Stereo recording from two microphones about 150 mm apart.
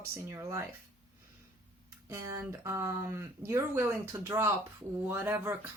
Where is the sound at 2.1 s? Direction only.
20° right (ahead or behind).